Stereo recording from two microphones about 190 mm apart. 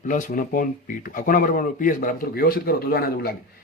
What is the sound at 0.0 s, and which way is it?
A man's voice, 45° left (ahead or behind).